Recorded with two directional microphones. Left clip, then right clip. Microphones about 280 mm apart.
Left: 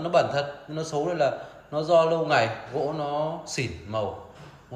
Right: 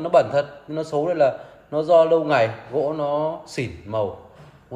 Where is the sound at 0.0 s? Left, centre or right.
Right.